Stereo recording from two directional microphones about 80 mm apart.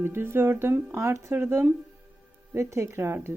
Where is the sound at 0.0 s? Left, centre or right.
Right.